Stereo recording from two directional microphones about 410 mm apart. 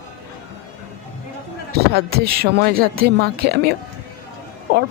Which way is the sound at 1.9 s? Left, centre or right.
Right.